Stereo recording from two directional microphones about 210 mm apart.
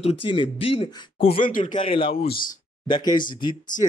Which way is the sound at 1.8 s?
25° left (ahead or behind).